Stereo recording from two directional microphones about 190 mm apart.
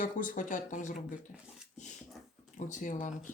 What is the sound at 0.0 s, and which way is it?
Speech, 45° left (ahead or behind).